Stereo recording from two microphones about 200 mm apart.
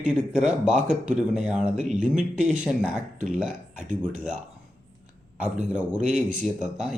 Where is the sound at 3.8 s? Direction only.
40° right (ahead or behind).